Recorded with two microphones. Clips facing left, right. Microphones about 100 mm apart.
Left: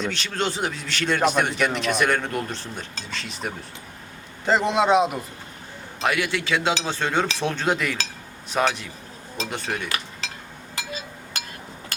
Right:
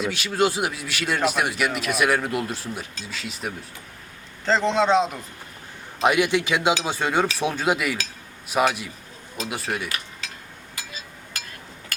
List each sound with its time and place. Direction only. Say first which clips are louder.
0.0 s speech: right 4 dB; 10° right (ahead or behind)
4.4 s a man's voice: even; 10° left (ahead or behind)
6.0 s speech: right 4 dB; 20° right (ahead or behind)
11.9 s a sound: right 1 dB; 25° left (ahead or behind)